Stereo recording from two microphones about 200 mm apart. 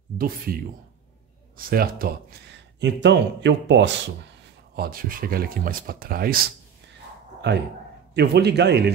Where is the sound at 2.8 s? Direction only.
60° right (ahead or behind).